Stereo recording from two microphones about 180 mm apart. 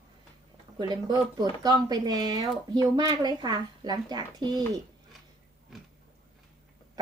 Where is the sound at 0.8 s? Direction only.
25° right (ahead or behind).